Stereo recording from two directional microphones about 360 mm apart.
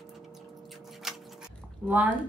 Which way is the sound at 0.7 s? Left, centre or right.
Centre.